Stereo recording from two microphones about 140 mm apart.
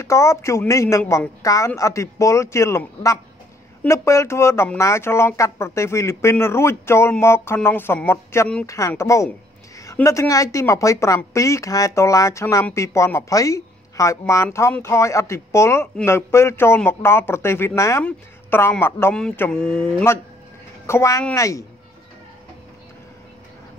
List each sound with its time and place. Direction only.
0.0 s a woman's voice: 20° left (ahead or behind)
19.1 s speech: 5° left (ahead or behind)
20.8 s a woman's voice: 20° left (ahead or behind)